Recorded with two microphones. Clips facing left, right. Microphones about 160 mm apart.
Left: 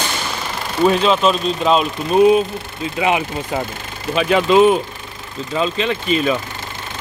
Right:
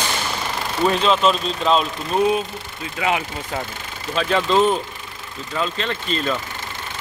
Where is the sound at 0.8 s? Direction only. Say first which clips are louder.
Left 3 dB; 5° left (ahead or behind).